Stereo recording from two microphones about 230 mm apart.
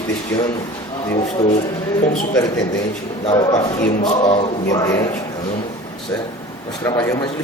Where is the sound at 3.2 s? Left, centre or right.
Centre.